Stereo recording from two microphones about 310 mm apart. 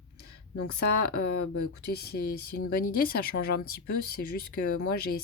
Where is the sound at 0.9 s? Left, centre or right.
Left.